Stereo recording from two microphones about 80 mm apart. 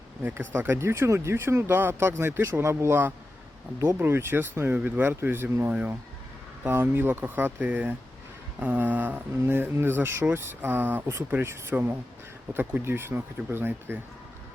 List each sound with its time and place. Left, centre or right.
0.2 s speech: right